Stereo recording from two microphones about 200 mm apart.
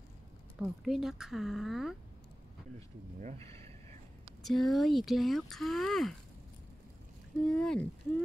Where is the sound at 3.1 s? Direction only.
35° right (ahead or behind).